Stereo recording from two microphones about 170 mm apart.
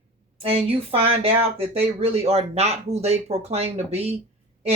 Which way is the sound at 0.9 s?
35° right (ahead or behind).